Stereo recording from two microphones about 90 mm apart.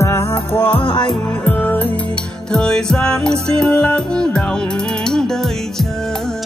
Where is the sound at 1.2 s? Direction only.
20° left (ahead or behind).